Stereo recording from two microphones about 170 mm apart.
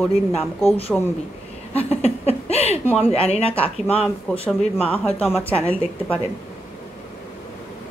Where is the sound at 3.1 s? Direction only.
35° left (ahead or behind).